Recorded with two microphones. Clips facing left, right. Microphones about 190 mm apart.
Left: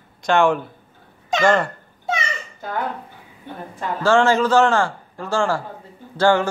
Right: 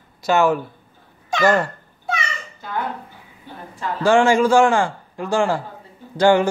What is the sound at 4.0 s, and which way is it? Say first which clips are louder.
A man's voice: right 2 dB; 15° right (ahead or behind).